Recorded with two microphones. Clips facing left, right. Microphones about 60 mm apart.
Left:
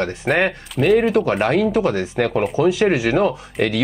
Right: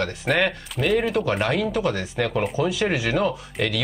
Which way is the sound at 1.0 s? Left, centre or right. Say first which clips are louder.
Left 5 dB; left.